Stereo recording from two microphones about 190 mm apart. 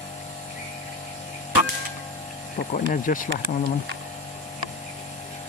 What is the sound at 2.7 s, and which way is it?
Speech, 45° left (ahead or behind).